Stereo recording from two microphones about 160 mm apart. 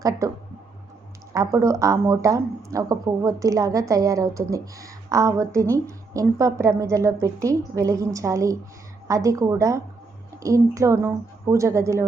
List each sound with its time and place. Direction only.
0.0 s a woman's voice: 20° right (ahead or behind)
1.3 s a woman's voice: 20° right (ahead or behind)